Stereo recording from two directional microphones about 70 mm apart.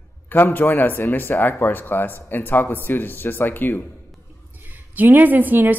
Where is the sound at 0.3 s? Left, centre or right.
Left.